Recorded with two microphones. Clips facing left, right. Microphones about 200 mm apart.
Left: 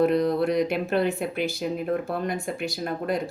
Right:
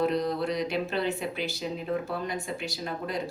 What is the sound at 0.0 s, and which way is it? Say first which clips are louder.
Speech: left 6 dB; 55° left (ahead or behind).